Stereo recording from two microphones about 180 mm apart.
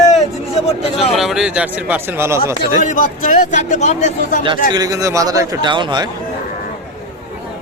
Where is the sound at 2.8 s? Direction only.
45° left (ahead or behind).